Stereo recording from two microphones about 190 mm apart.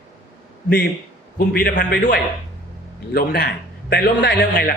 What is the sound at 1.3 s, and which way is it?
A man's voice, 50° left (ahead or behind).